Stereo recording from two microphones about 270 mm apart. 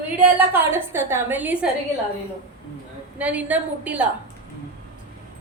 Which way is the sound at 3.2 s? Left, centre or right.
Centre.